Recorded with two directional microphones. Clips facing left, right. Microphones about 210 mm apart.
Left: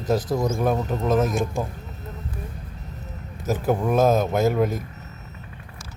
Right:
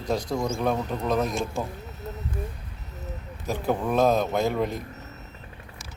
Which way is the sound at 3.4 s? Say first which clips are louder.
Left 4 dB; 5° left (ahead or behind).